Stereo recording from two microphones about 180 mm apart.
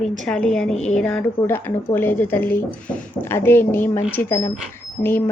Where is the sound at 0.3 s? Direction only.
5° left (ahead or behind).